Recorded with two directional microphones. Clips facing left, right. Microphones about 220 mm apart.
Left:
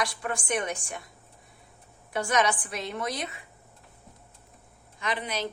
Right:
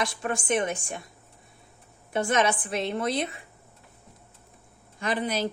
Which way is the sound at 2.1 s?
25° right (ahead or behind).